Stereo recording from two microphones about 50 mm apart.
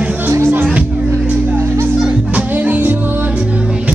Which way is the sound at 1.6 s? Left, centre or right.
Right.